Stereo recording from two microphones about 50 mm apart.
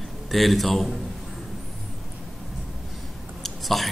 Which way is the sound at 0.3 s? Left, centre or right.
Centre.